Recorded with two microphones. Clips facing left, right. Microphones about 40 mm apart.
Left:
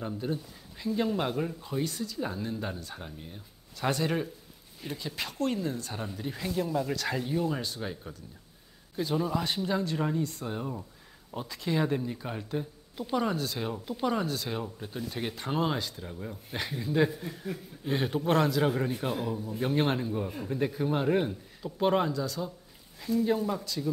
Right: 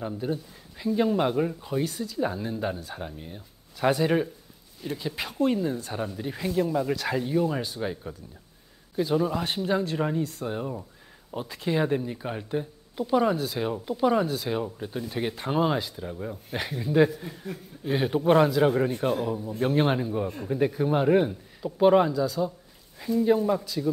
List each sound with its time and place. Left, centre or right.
0.0 s speech: centre